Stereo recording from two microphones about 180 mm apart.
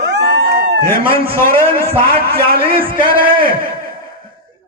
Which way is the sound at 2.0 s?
55° right (ahead or behind).